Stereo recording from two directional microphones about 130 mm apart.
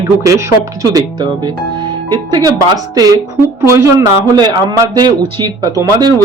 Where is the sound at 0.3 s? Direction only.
25° right (ahead or behind).